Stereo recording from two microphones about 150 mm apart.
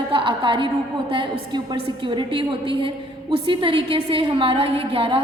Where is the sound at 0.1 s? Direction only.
35° right (ahead or behind).